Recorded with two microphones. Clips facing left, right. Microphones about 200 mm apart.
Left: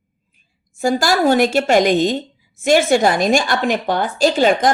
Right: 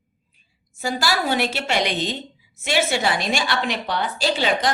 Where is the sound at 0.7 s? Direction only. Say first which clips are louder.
Left 7 dB; 45° left (ahead or behind).